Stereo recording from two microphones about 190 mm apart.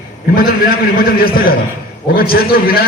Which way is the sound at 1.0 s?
50° left (ahead or behind).